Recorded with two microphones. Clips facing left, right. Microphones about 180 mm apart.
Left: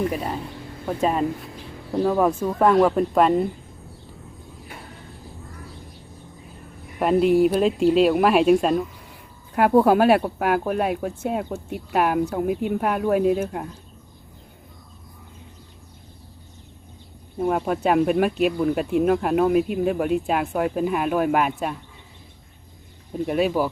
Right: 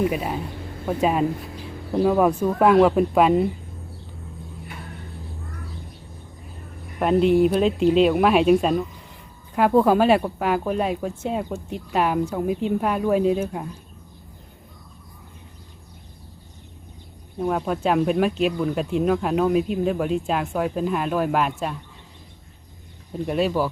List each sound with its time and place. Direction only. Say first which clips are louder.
0.0 s speech: right 2 dB; 5° right (ahead or behind)
7.0 s speech: even; 5° left (ahead or behind)
17.3 s speech: left 1 dB; 5° left (ahead or behind)
23.1 s speech: left 1 dB; 5° left (ahead or behind)